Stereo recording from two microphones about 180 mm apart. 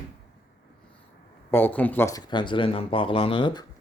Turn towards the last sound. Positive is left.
turn(degrees=25)  # may be behind; listen again after turning